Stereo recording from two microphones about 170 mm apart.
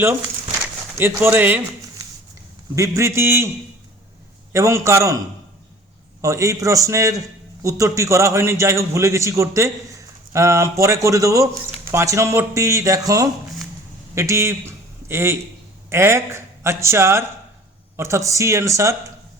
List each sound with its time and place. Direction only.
0.9 s a man's voice: 15° right (ahead or behind)
2.7 s a man's voice: 15° right (ahead or behind)
4.5 s a man's voice: 15° right (ahead or behind)
6.2 s a man's voice: 20° right (ahead or behind)